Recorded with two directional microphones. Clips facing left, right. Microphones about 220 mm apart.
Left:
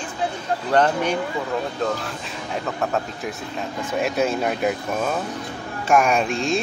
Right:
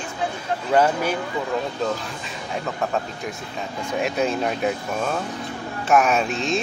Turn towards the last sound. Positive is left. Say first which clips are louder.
# left 1 dB
turn(degrees=0)  # may be behind; listen again after turning